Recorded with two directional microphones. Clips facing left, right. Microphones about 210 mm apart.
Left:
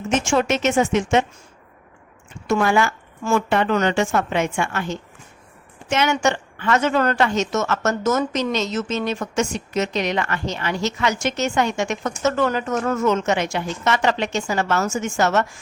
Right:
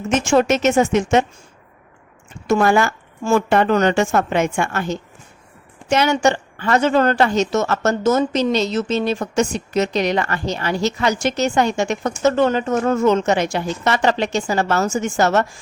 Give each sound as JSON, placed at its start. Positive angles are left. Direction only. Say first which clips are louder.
{"t": 0.3, "sound": "speech", "louder": "right 6 dB", "side_deg": -40}
{"t": 2.5, "sound": "a woman's voice", "louder": "right 3 dB", "side_deg": -45}